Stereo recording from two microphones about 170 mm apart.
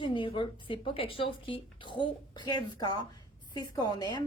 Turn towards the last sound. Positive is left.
turn(degrees=25)  # may be behind; listen again after turning